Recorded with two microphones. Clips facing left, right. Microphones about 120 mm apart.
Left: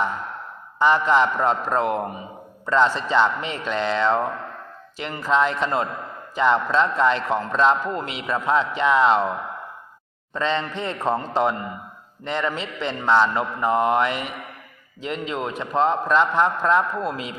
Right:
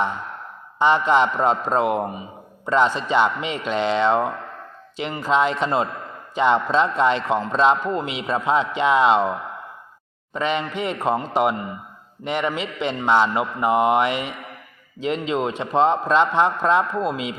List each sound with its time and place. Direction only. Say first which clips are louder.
0.8 s a man's voice: right 1 dB; 20° right (ahead or behind)
10.3 s a man's voice: right 1 dB; 15° right (ahead or behind)